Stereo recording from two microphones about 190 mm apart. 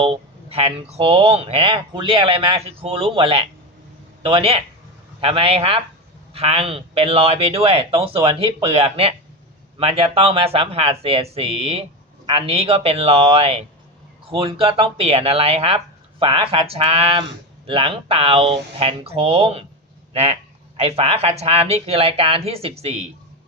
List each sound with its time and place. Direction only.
0.0 s a man's voice: 30° right (ahead or behind)
20.7 s speech: 30° right (ahead or behind)